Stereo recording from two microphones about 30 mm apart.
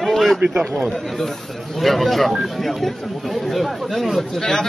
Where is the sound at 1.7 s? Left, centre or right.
Centre.